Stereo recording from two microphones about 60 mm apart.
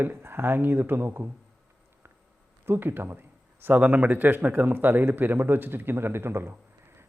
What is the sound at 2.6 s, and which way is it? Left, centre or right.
Speech, right.